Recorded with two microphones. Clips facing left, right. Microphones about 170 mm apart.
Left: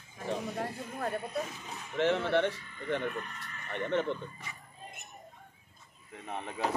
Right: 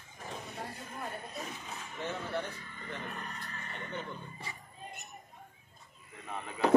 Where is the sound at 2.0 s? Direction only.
75° left (ahead or behind).